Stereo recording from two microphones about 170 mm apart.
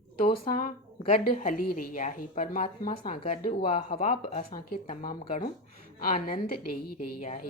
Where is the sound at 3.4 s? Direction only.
30° left (ahead or behind).